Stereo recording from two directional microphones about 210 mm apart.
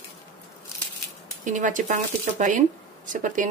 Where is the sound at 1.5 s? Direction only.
40° right (ahead or behind).